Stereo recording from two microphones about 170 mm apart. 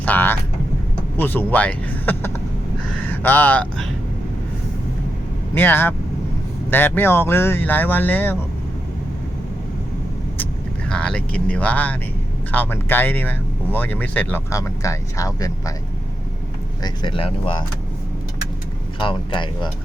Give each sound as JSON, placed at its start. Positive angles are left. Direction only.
{"t": 0.0, "sound": "speech", "side_deg": 10}
{"t": 5.5, "sound": "speech", "side_deg": 15}
{"t": 10.3, "sound": "speech", "side_deg": 10}
{"t": 16.8, "sound": "speech", "side_deg": 30}
{"t": 18.9, "sound": "speech", "side_deg": 30}